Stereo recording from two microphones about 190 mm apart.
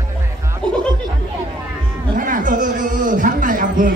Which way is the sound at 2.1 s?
45° right (ahead or behind).